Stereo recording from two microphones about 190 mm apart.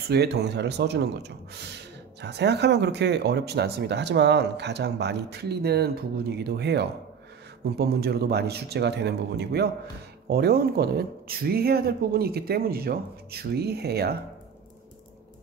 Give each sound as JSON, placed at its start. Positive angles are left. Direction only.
{"t": 0.1, "sound": "speech", "side_deg": -60}